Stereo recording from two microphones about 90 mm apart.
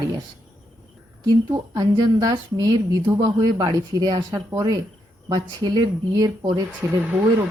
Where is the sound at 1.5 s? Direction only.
50° right (ahead or behind).